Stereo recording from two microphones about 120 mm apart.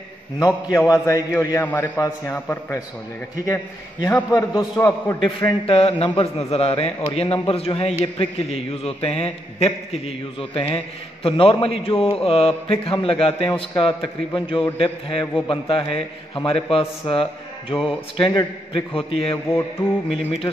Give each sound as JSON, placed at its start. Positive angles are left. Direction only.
{"t": 0.4, "sound": "a man's voice", "side_deg": 30}
{"t": 2.3, "sound": "a man's voice", "side_deg": 15}
{"t": 4.0, "sound": "a man's voice", "side_deg": 30}
{"t": 5.7, "sound": "a man's voice", "side_deg": 50}
{"t": 19.4, "sound": "a man's voice", "side_deg": 20}
{"t": 20.1, "sound": "a man's voice", "side_deg": 55}